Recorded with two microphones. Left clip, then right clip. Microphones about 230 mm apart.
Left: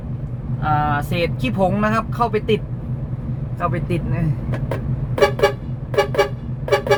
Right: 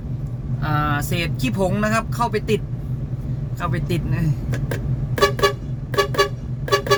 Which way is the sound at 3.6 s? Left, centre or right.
Right.